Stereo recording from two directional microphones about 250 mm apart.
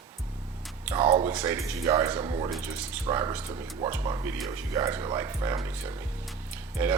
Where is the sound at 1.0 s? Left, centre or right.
Centre.